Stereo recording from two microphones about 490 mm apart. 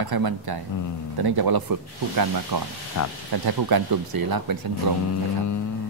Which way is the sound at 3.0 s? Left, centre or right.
Left.